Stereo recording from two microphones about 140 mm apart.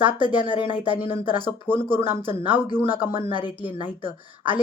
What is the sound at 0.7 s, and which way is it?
Speech, 10° right (ahead or behind).